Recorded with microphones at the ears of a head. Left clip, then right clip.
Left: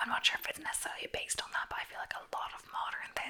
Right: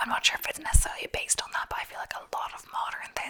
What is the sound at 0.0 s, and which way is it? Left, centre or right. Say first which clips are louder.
Whispering: right 5 dB; right.